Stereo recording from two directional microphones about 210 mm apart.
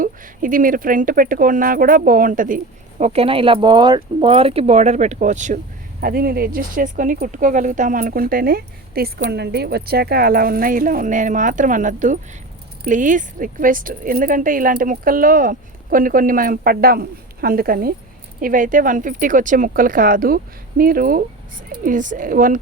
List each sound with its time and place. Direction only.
0.0 s speech: 40° right (ahead or behind)
3.0 s speech: 30° right (ahead or behind)